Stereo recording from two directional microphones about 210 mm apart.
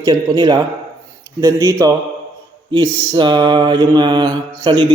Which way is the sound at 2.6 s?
20° right (ahead or behind).